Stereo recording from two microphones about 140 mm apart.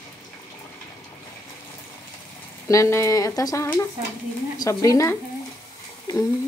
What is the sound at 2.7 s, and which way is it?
Speech, 20° left (ahead or behind).